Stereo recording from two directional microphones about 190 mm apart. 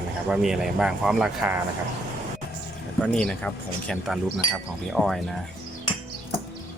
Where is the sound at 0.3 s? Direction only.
5° right (ahead or behind).